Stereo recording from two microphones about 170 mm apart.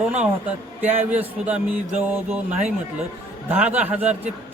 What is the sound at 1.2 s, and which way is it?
Speech, 40° right (ahead or behind).